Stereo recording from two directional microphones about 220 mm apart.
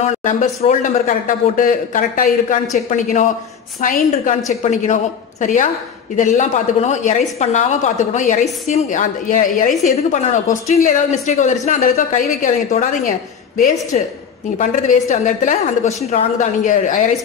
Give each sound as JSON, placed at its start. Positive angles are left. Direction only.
{"t": 0.2, "sound": "a woman's voice", "side_deg": 35}